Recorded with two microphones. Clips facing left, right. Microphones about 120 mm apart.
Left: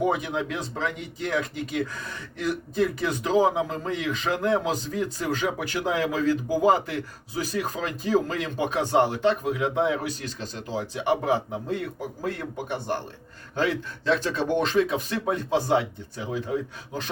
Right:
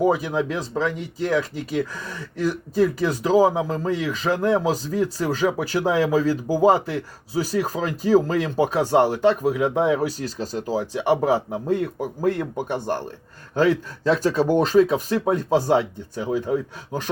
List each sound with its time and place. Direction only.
0.0 s speech: 35° right (ahead or behind)